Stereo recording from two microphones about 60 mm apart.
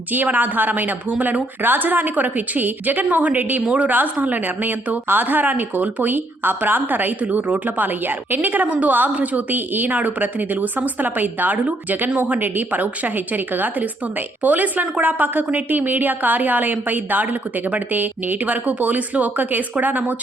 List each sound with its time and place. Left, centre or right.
0.1 s a woman's voice: right